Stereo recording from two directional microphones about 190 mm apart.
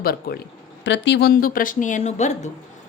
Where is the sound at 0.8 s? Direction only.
70° left (ahead or behind).